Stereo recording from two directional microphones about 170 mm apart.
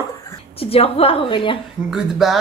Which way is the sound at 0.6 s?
35° left (ahead or behind).